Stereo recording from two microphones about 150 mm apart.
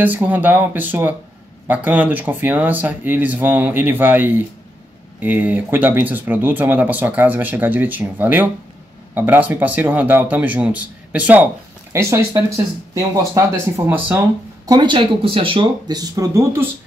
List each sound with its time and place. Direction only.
0.0 s speech: 10° right (ahead or behind)
14.7 s speech: 30° right (ahead or behind)